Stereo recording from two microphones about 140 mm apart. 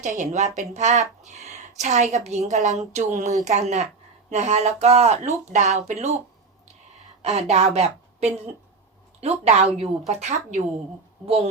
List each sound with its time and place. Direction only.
0.0 s speech: 60° right (ahead or behind)
7.2 s a woman's voice: 50° right (ahead or behind)